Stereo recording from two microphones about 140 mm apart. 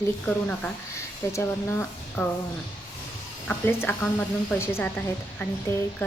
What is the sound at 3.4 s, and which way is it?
A woman's voice, 15° left (ahead or behind).